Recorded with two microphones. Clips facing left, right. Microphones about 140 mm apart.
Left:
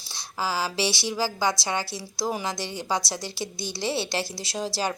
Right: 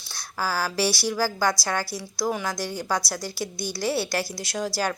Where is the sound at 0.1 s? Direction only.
20° left (ahead or behind).